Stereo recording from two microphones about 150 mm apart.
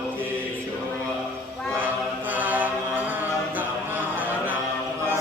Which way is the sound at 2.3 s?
10° right (ahead or behind).